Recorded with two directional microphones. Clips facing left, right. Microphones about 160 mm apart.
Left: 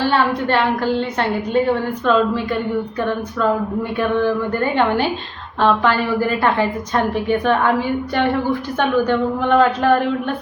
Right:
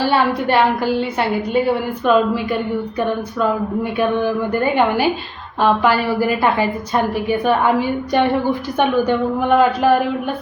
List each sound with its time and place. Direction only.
0.0 s a woman's voice: 10° right (ahead or behind)
4.2 s a woman's voice: 10° right (ahead or behind)